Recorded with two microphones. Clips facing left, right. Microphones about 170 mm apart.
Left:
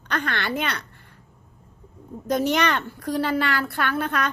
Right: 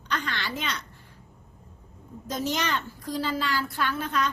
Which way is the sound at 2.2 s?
65° left (ahead or behind).